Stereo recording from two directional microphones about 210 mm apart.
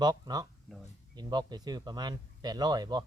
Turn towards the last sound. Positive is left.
turn(degrees=-20)  # may be behind; listen again after turning